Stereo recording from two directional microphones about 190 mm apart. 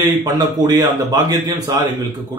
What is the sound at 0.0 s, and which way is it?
Speech, 20° right (ahead or behind).